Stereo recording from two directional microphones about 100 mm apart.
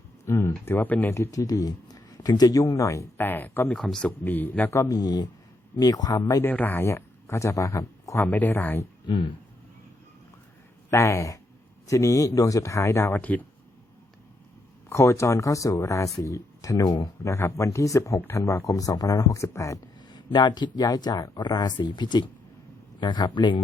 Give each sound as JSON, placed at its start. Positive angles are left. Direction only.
{"t": 0.3, "sound": "speech", "side_deg": 25}
{"t": 3.2, "sound": "speech", "side_deg": 20}
{"t": 3.8, "sound": "speech", "side_deg": 5}
{"t": 4.2, "sound": "speech", "side_deg": 20}
{"t": 4.9, "sound": "speech", "side_deg": 40}
{"t": 6.4, "sound": "speech", "side_deg": 20}
{"t": 8.3, "sound": "speech", "side_deg": 20}
{"t": 9.0, "sound": "speech", "side_deg": 55}
{"t": 10.9, "sound": "speech", "side_deg": 30}
{"t": 13.1, "sound": "speech", "side_deg": 15}
{"t": 14.8, "sound": "speech", "side_deg": 30}
{"t": 20.1, "sound": "speech", "side_deg": 50}